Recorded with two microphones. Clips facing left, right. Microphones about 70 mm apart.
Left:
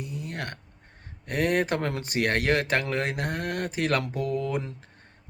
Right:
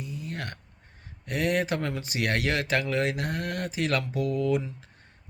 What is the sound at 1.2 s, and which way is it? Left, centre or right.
A man's voice, left.